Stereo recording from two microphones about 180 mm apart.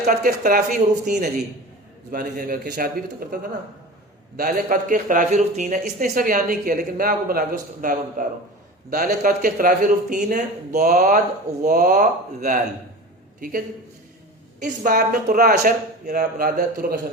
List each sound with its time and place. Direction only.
0.0 s speech: 45° right (ahead or behind)
4.4 s speech: 50° right (ahead or behind)
14.6 s speech: 50° right (ahead or behind)